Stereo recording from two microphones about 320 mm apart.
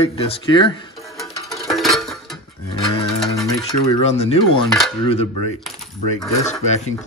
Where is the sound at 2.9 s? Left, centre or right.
Centre.